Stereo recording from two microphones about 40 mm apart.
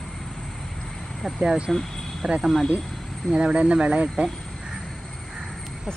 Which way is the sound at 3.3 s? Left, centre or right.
Right.